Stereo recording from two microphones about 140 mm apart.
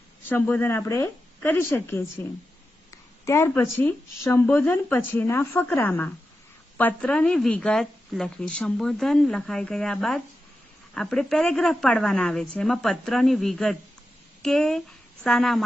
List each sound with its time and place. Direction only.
0.2 s speech: 15° left (ahead or behind)
3.3 s a woman's voice: 20° left (ahead or behind); by 15.6 s 5° left (ahead or behind)